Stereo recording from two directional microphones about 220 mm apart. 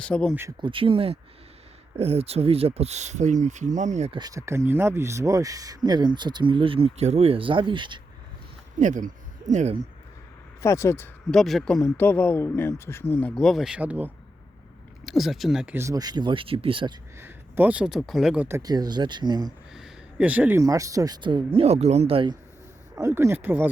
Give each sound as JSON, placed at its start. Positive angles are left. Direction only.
{"t": 0.0, "sound": "speech", "side_deg": 5}
{"t": 0.3, "sound": "speech", "side_deg": -15}
{"t": 4.2, "sound": "speech", "side_deg": -15}
{"t": 8.8, "sound": "speech", "side_deg": -35}
{"t": 10.6, "sound": "speech", "side_deg": 15}
{"t": 17.2, "sound": "speech", "side_deg": -10}
{"t": 19.7, "sound": "speech", "side_deg": -5}
{"t": 23.0, "sound": "speech", "side_deg": -10}